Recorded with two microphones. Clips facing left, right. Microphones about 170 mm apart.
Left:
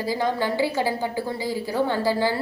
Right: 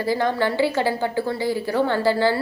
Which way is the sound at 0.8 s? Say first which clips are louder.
Right 3 dB; 60° right (ahead or behind).